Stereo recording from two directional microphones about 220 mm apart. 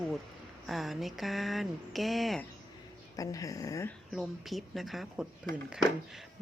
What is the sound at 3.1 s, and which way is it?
Speech, 15° left (ahead or behind).